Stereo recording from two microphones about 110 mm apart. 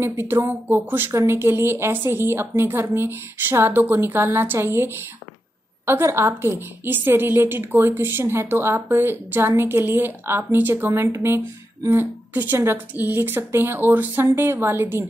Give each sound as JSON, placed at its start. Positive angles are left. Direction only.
{"t": 0.0, "sound": "a woman's voice", "side_deg": -25}